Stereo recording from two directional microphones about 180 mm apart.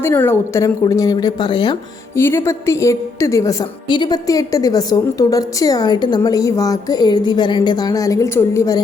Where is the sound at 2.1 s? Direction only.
15° left (ahead or behind).